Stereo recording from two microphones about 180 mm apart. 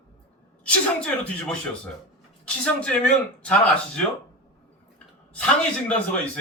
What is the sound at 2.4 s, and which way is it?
Speech, 5° left (ahead or behind).